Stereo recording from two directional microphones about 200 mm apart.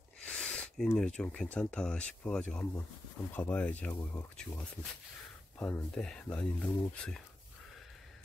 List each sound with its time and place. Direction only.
0.2 s speech: 5° left (ahead or behind)